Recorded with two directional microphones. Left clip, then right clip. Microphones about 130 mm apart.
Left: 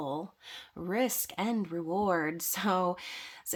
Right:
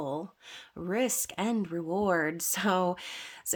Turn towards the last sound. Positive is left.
turn(degrees=-10)  # may be behind; listen again after turning